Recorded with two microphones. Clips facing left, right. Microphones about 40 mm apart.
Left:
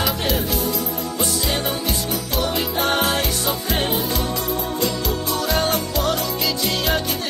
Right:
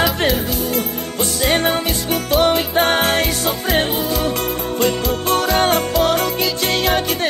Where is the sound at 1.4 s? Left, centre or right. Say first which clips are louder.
Right 6 dB; right.